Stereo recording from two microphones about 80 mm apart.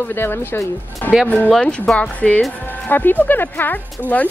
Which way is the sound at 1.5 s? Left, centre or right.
Centre.